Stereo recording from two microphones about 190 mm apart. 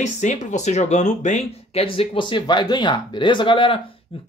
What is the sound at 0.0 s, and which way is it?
Speech, 40° left (ahead or behind).